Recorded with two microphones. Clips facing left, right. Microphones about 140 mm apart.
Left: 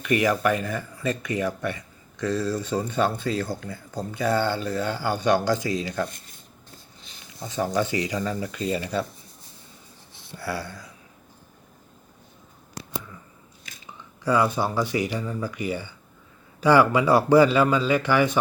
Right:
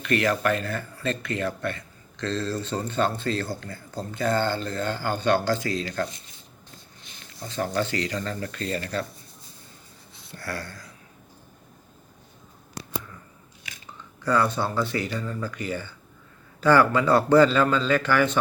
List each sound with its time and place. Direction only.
0.0 s speech: 15° left (ahead or behind)
6.1 s speech: 50° left (ahead or behind)
7.4 s speech: 15° left (ahead or behind)
10.3 s a sound: 5° left (ahead or behind)
14.3 s speech: 10° left (ahead or behind)